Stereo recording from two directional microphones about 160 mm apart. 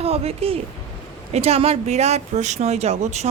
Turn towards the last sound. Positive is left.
turn(degrees=-45)  # may be behind; listen again after turning